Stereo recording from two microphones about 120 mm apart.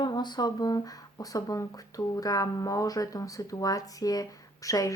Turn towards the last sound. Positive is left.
turn(degrees=30)  # may be behind; listen again after turning